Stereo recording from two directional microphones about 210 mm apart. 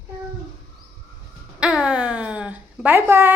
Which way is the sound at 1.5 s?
5° right (ahead or behind).